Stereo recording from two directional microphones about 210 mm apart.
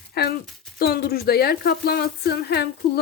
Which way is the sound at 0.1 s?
50° left (ahead or behind).